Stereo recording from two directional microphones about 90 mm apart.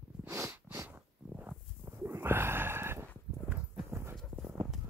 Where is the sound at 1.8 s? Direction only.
25° right (ahead or behind).